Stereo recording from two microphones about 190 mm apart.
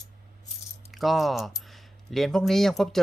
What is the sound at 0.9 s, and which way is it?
Speech, centre (ahead or behind).